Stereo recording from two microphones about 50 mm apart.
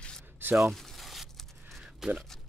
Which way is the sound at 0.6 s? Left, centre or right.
Centre.